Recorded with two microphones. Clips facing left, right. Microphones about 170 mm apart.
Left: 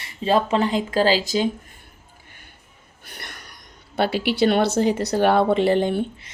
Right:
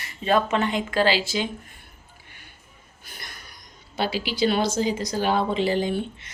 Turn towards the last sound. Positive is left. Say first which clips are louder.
# left 4 dB
turn(degrees=55)  # may be behind; listen again after turning